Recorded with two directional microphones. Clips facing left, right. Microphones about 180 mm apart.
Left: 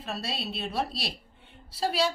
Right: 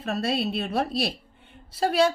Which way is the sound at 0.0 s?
50° right (ahead or behind).